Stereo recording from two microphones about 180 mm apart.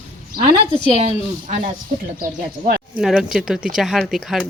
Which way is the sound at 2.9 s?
5° right (ahead or behind).